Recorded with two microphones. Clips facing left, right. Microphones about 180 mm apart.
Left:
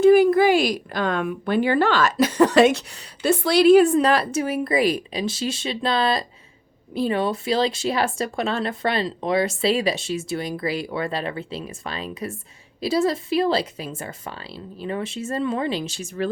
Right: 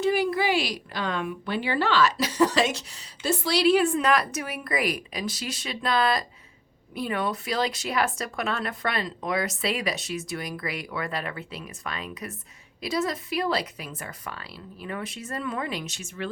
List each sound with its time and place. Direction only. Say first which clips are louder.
0.0 s a woman's voice: left 10 dB; 50° left (ahead or behind)